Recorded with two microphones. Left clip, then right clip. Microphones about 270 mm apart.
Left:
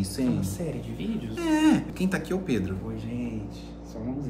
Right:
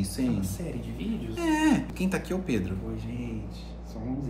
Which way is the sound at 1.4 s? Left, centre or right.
Centre.